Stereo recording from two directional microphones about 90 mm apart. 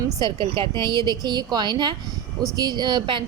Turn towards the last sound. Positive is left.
turn(degrees=-65)  # may be behind; listen again after turning